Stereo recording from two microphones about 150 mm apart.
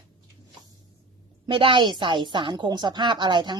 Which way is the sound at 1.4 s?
35° right (ahead or behind).